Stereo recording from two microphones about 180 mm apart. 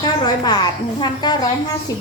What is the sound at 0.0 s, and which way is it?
A woman's voice, 25° left (ahead or behind).